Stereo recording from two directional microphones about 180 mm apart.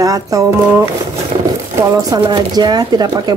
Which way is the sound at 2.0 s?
20° right (ahead or behind).